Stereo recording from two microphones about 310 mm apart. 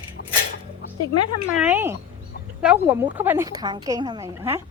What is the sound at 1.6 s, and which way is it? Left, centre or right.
A woman's voice, centre.